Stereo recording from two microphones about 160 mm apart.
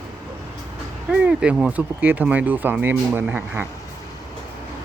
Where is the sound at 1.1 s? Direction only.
5° right (ahead or behind).